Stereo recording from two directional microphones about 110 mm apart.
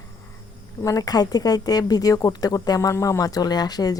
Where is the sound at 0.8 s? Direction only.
30° left (ahead or behind).